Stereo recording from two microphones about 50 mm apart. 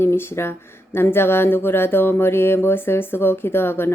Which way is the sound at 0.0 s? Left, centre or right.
Left.